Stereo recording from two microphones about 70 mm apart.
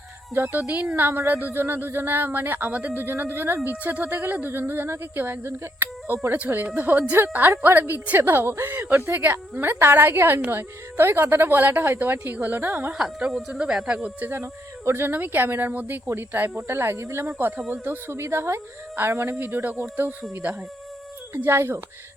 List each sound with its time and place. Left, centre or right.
0.3 s a woman's voice: right
0.6 s a woman's voice: centre
0.9 s a woman's voice: right
6.3 s a woman's voice: right
12.9 s speech: centre
14.3 s a woman's voice: right
15.1 s a woman's voice: right
17.7 s a woman's voice: right
21.3 s a woman's voice: right